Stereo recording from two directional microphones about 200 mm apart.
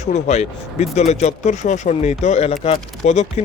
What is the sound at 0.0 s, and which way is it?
Speech, 35° left (ahead or behind).